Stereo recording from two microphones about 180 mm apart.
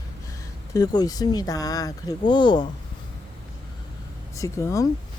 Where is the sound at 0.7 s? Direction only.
20° left (ahead or behind).